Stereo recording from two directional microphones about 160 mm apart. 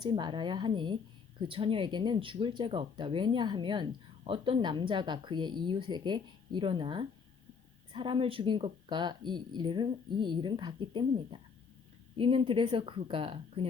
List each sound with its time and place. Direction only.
0.0 s a woman's voice: 30° right (ahead or behind)